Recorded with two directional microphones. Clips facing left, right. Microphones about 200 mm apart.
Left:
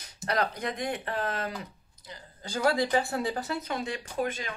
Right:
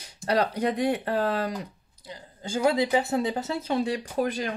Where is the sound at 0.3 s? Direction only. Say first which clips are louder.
Right 5 dB; 30° right (ahead or behind).